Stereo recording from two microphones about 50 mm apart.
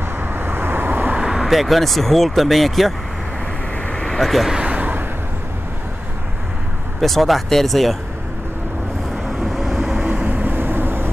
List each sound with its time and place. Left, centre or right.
0.2 s vehicle: right
1.1 s vehicle: centre
1.4 s speech: centre
3.9 s vehicle: centre
4.2 s speech: centre
4.6 s vehicle: right
7.0 s speech: centre
9.6 s vehicle: centre
10.0 s vehicle: right